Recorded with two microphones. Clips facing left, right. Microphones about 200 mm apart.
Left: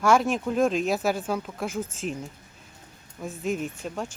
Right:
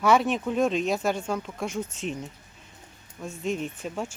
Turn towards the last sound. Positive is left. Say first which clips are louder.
# even
turn(degrees=-5)  # may be behind; listen again after turning